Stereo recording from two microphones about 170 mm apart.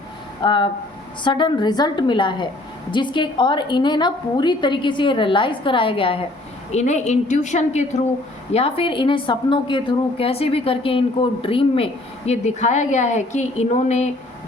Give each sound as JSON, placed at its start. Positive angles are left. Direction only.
{"t": 0.4, "sound": "a woman's voice", "side_deg": 25}
{"t": 6.7, "sound": "a woman's voice", "side_deg": 40}